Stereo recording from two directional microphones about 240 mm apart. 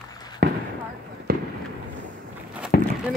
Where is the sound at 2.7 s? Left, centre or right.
Left.